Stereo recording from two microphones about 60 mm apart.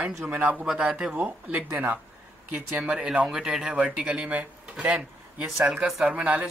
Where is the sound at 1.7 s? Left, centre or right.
Right.